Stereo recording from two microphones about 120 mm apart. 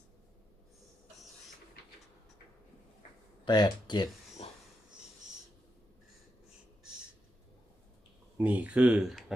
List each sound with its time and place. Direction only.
3.4 s speech: 40° left (ahead or behind)
8.4 s speech: 15° right (ahead or behind)